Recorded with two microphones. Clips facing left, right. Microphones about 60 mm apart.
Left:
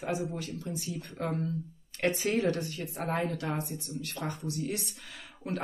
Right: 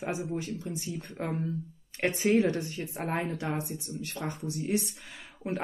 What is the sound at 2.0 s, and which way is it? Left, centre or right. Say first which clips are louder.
Speech: right 3 dB; right.